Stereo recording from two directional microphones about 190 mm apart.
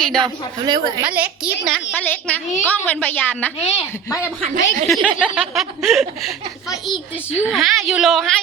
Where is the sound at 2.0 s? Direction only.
10° left (ahead or behind).